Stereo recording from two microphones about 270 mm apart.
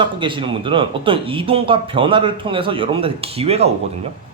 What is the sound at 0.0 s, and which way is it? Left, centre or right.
Speech, centre.